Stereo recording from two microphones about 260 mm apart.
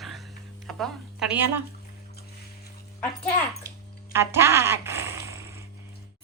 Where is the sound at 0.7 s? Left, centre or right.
Centre.